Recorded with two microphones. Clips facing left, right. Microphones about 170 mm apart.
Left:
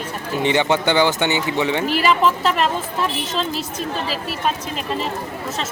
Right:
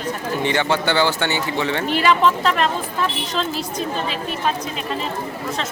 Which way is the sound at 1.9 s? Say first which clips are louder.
Right 3 dB; 5° left (ahead or behind).